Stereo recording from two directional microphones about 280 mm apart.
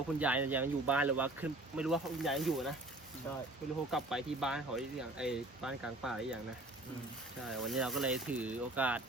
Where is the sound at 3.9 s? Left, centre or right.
Centre.